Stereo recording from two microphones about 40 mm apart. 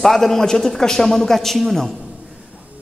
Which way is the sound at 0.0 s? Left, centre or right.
Centre.